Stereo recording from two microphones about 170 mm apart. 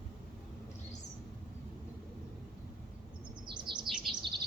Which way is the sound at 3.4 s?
25° right (ahead or behind).